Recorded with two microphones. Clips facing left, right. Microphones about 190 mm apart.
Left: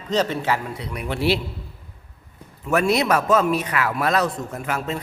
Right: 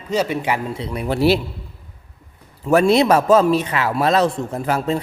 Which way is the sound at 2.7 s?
30° right (ahead or behind).